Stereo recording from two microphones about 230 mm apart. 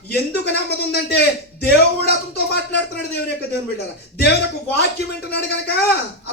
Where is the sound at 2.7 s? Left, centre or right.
Left.